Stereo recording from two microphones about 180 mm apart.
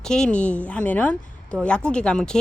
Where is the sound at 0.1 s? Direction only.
5° left (ahead or behind).